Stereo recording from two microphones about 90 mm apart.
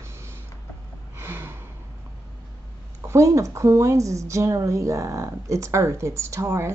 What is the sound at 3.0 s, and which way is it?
Speech, 35° right (ahead or behind).